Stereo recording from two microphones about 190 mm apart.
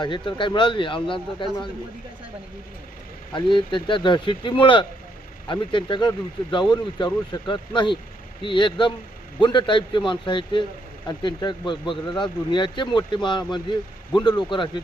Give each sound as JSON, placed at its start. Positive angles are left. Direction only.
{"t": 0.0, "sound": "speech", "side_deg": 25}
{"t": 3.3, "sound": "speech", "side_deg": 25}
{"t": 14.2, "sound": "speech", "side_deg": 20}